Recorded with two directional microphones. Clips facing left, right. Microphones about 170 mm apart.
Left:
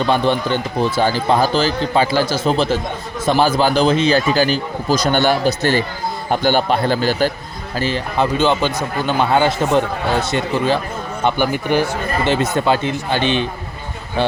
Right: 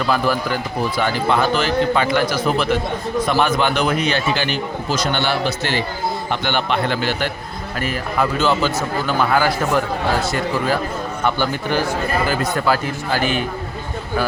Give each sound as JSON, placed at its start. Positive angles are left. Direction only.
{"t": 0.0, "sound": "a man's voice", "side_deg": 25}
{"t": 7.8, "sound": "a man's voice", "side_deg": 30}